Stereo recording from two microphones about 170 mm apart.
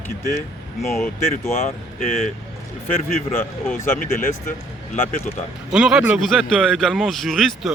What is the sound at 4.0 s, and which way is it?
Speech, 55° left (ahead or behind).